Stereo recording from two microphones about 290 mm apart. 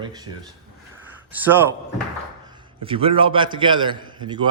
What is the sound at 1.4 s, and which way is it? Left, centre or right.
Speech, centre.